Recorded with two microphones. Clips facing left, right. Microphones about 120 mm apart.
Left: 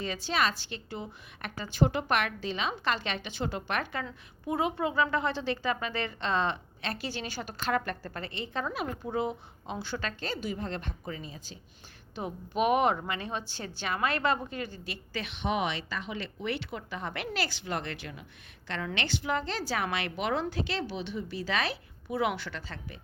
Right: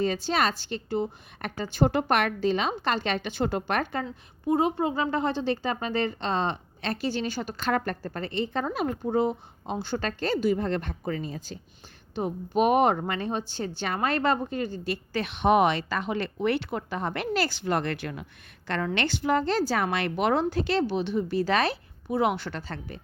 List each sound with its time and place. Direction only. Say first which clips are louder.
0.3 s a woman's voice: right 4 dB; 35° right (ahead or behind)
7.3 s a woman's voice: right 4 dB; 50° right (ahead or behind)
22.1 s a woman's voice: right 5 dB; 35° right (ahead or behind)
22.4 s a woman's voice: right 5 dB; 50° right (ahead or behind)